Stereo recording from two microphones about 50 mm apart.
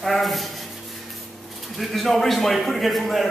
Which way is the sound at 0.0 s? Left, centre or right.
Centre.